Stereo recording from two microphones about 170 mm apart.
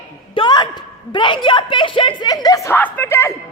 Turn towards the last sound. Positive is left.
turn(degrees=15)  # may be behind; listen again after turning